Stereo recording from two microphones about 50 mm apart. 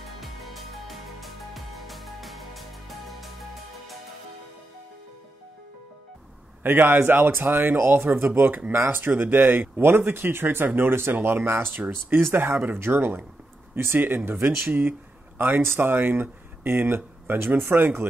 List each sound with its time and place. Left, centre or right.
0.2 s music: centre
6.6 s speech: right